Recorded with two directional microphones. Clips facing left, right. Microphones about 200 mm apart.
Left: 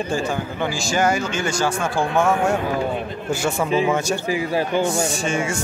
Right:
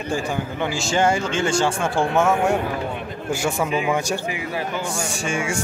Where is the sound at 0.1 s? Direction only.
15° right (ahead or behind).